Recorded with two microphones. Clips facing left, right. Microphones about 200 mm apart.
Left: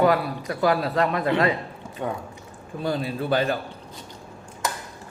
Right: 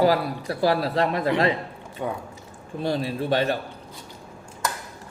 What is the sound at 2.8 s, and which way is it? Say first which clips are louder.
Speech: even; 30° right (ahead or behind).